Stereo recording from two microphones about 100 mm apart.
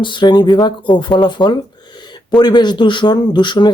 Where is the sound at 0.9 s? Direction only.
50° left (ahead or behind).